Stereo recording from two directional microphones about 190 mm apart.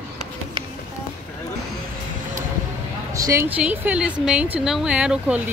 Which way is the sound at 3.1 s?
15° right (ahead or behind).